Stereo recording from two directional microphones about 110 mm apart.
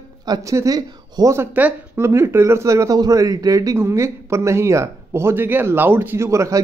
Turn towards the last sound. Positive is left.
turn(degrees=-30)  # may be behind; listen again after turning